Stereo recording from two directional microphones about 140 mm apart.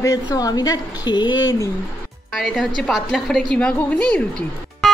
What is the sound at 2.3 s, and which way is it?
A woman's voice, 5° left (ahead or behind).